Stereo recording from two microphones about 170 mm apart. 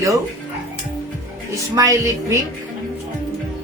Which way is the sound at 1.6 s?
20° right (ahead or behind).